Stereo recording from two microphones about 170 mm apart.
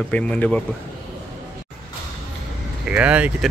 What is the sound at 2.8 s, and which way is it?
Speech, 5° right (ahead or behind).